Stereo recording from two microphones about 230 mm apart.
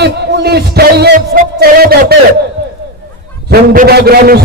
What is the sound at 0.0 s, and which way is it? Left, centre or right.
A man's voice, right.